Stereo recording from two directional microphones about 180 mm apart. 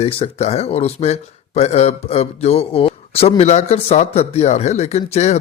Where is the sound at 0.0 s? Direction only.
35° left (ahead or behind).